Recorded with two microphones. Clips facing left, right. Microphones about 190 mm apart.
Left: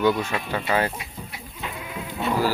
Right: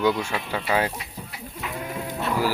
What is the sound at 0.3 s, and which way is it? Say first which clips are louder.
Speech: left 1 dB; 5° right (ahead or behind).